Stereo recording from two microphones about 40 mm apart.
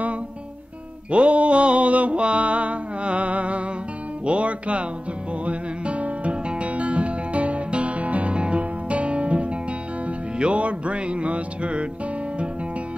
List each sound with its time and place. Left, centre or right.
1.1 s mantra: right
4.3 s music: right